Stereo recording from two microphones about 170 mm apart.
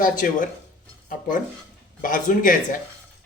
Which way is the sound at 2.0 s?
50° left (ahead or behind).